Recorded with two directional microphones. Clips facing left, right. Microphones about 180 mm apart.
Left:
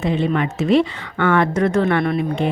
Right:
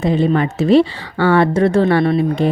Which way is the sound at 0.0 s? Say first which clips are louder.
Right 4 dB; 35° right (ahead or behind).